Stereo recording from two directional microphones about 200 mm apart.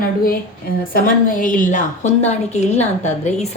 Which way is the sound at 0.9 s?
45° left (ahead or behind).